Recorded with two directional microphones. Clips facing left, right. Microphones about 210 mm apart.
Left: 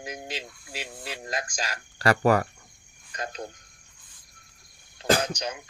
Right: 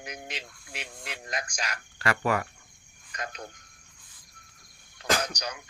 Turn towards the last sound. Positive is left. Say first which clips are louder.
# left 4 dB
turn(degrees=25)  # may be behind; listen again after turning